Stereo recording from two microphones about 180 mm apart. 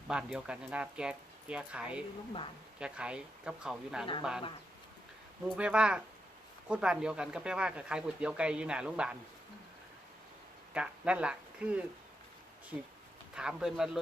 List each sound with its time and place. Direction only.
0.1 s speech: 5° right (ahead or behind)
5.5 s speech: 5° right (ahead or behind)
10.8 s speech: 5° right (ahead or behind)
13.3 s speech: 5° right (ahead or behind)